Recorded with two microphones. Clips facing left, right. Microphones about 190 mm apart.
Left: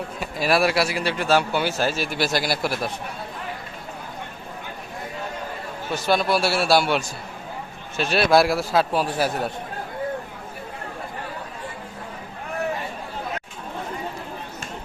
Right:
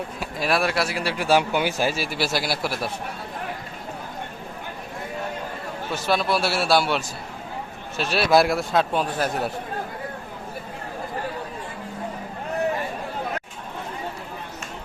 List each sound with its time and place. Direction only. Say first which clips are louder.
0.2 s speech: left 3 dB; centre (ahead or behind)
5.9 s speech: left 2 dB; centre (ahead or behind)